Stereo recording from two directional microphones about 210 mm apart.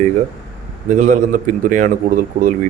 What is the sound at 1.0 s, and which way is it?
Speech, 35° right (ahead or behind).